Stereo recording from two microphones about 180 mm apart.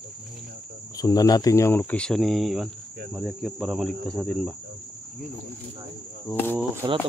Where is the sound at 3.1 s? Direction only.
Centre (ahead or behind).